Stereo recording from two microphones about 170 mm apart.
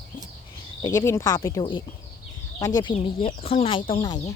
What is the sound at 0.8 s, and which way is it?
Speech, 15° left (ahead or behind).